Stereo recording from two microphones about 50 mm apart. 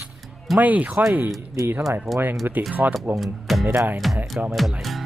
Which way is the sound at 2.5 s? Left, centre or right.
Right.